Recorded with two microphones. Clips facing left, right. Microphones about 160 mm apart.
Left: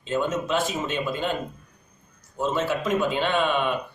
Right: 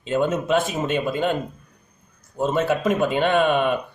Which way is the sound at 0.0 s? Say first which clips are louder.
Right 4 dB; 55° right (ahead or behind).